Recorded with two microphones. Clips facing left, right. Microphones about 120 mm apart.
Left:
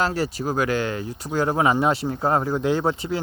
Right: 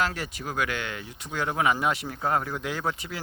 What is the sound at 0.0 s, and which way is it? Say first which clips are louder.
Speech: left 6 dB; 35° left (ahead or behind).